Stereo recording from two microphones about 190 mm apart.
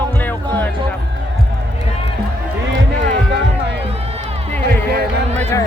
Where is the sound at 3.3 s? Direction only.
65° right (ahead or behind).